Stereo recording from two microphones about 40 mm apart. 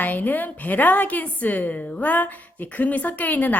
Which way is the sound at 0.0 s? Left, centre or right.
Left.